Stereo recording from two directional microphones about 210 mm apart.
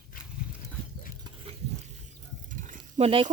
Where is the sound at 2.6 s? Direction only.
30° right (ahead or behind).